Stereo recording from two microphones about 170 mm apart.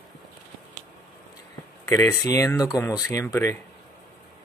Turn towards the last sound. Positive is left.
turn(degrees=15)  # may be behind; listen again after turning